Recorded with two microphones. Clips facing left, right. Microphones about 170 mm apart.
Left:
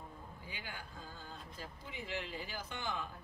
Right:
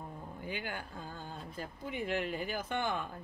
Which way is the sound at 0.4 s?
60° right (ahead or behind).